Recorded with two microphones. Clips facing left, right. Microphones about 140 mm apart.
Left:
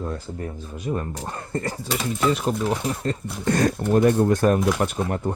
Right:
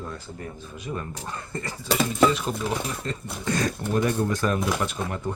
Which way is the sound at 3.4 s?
55° left (ahead or behind).